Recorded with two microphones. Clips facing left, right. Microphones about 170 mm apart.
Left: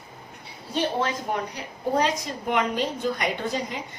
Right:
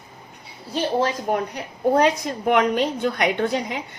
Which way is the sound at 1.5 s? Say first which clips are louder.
Right 7 dB; 60° right (ahead or behind).